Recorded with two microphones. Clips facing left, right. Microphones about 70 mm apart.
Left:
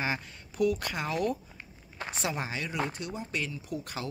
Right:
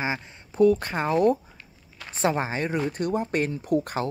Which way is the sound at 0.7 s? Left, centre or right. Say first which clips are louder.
Right 7 dB; right.